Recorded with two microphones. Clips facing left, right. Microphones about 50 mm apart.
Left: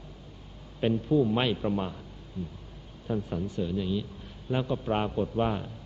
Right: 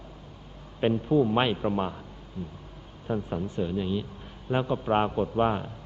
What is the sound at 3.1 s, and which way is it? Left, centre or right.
Speech, centre.